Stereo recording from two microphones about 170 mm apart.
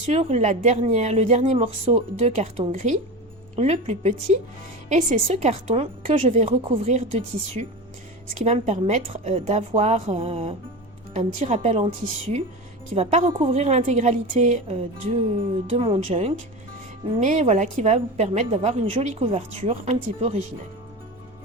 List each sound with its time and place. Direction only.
0.1 s a woman's voice: 40° right (ahead or behind)
12.9 s a woman's voice: 40° right (ahead or behind)
16.0 s a woman's voice: 45° right (ahead or behind)